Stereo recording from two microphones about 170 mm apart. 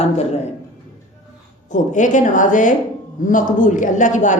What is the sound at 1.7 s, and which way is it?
Speech, 45° left (ahead or behind).